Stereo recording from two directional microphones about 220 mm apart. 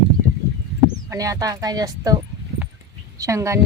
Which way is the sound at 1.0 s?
15° right (ahead or behind).